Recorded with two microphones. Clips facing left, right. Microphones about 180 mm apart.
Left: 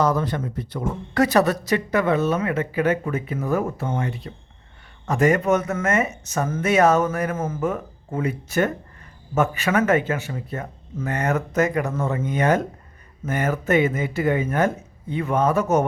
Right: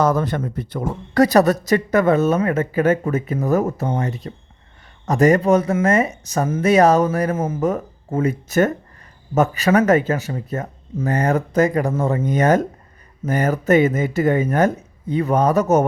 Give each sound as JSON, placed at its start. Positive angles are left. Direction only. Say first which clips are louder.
{"t": 0.0, "sound": "speech", "louder": "right 3 dB", "side_deg": -50}